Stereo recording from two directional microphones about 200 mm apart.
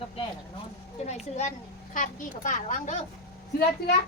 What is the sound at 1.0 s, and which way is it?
Speech, 35° left (ahead or behind).